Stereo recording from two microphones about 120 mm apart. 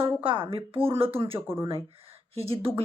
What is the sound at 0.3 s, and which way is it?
Speech, 45° right (ahead or behind).